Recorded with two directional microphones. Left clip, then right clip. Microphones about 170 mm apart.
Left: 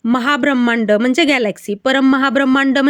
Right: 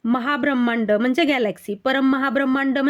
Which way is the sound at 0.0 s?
20° left (ahead or behind).